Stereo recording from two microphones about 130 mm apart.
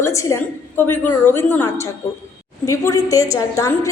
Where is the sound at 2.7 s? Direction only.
25° left (ahead or behind).